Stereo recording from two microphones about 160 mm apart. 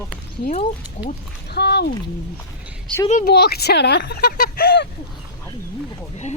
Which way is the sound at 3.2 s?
85° left.